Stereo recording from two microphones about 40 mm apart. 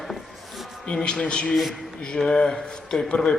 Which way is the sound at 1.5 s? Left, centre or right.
Centre.